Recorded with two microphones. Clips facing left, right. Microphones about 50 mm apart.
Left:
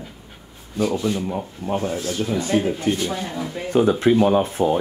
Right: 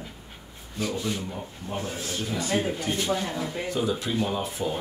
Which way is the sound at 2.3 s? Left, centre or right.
Left.